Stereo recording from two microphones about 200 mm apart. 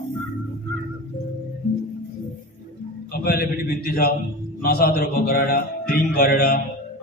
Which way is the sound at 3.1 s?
50° left (ahead or behind).